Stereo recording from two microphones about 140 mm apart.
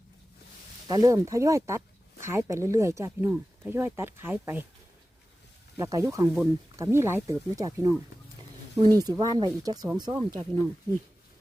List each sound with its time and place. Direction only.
0.9 s speech: 25° right (ahead or behind)
5.7 s speech: 20° right (ahead or behind)